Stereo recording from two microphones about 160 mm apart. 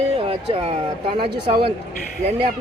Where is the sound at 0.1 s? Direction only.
35° right (ahead or behind).